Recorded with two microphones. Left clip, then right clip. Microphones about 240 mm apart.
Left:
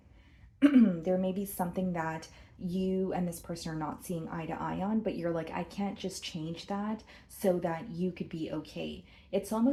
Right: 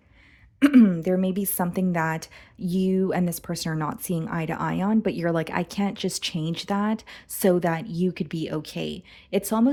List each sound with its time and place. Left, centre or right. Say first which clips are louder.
0.6 s speech: right 7 dB; right